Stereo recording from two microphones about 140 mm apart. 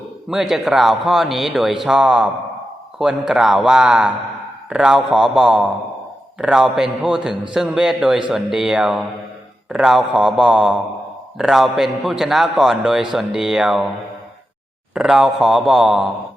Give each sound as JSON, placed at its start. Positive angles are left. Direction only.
{"t": 0.3, "sound": "a man's voice", "side_deg": 0}
{"t": 14.9, "sound": "a man's voice", "side_deg": -5}